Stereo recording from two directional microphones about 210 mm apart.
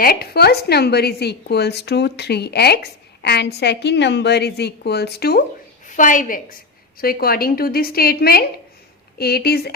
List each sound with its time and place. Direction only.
0.0 s a woman's voice: 45° left (ahead or behind)